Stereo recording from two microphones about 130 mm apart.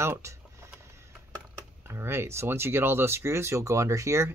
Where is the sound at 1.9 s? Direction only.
20° right (ahead or behind).